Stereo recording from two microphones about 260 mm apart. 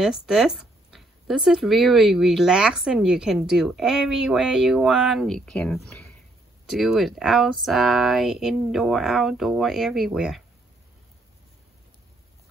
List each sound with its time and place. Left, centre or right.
0.0 s speech: centre